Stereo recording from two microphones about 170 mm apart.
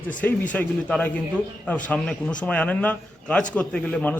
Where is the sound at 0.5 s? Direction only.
10° left (ahead or behind).